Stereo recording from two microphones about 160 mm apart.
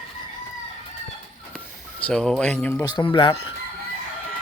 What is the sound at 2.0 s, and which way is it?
Speech, 5° left (ahead or behind).